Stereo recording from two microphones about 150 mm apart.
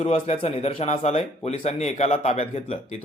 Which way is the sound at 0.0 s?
40° left (ahead or behind).